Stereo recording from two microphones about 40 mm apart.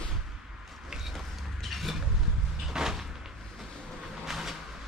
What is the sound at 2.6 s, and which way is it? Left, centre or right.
Door, centre.